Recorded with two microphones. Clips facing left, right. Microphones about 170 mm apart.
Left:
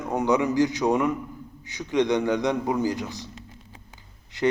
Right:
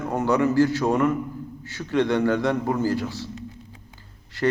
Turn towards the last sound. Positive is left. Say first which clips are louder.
# even
turn(degrees=10)  # may be behind; listen again after turning